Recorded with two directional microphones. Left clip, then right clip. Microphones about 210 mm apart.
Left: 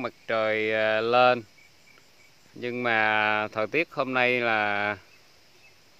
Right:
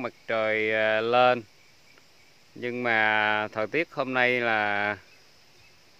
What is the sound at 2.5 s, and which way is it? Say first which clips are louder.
Speech: even; 5° left (ahead or behind).